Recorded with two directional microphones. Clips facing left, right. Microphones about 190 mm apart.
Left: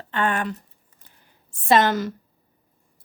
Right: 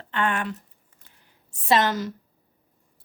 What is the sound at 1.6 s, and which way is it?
Speech, 55° left (ahead or behind).